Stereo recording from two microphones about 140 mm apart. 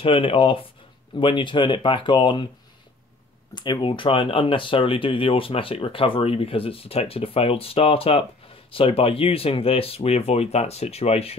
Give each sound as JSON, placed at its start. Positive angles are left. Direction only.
{"t": 0.0, "sound": "speech", "side_deg": 40}
{"t": 3.5, "sound": "speech", "side_deg": 30}